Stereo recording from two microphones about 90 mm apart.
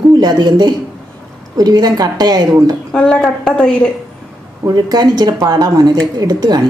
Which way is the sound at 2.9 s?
10° left (ahead or behind).